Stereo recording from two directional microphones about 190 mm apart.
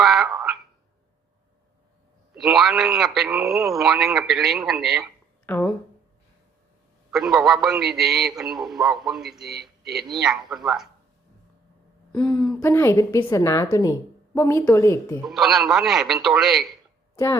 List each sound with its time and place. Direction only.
0.0 s frog: centre (ahead or behind)
2.4 s a man's voice: centre (ahead or behind)
5.5 s speech: 10° left (ahead or behind)
7.1 s a man's voice: centre (ahead or behind)
12.1 s a woman's voice: 5° left (ahead or behind)
15.2 s a man's voice: centre (ahead or behind)